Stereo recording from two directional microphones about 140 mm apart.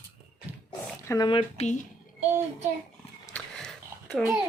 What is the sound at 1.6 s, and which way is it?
Speech, 55° left (ahead or behind).